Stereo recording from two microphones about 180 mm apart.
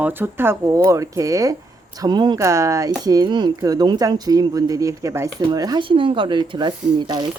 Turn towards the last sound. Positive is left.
turn(degrees=-25)  # may be behind; listen again after turning